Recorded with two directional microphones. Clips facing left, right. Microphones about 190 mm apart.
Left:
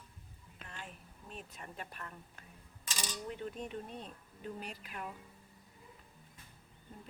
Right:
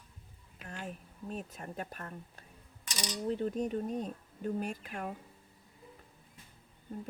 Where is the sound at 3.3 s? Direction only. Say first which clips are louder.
Right 11 dB; 40° right (ahead or behind).